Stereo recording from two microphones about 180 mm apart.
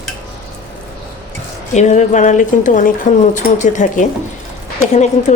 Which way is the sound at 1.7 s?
40° left (ahead or behind).